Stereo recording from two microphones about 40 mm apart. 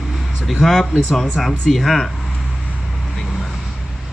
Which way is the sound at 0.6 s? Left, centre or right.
Centre.